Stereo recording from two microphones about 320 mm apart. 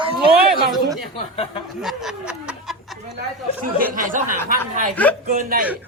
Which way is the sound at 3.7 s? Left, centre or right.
Right.